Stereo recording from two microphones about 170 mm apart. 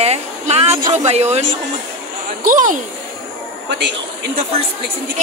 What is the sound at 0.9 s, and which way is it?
A woman's voice, 40° right (ahead or behind).